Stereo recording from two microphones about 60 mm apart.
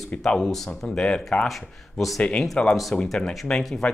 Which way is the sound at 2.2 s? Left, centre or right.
Centre.